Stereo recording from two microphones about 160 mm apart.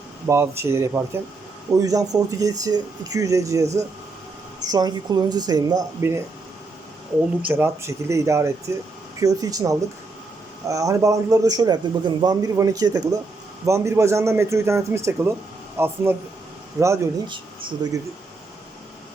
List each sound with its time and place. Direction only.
0.3 s a man's voice: 15° right (ahead or behind)
7.4 s a man's voice: 15° right (ahead or behind)
17.2 s speech: 30° right (ahead or behind)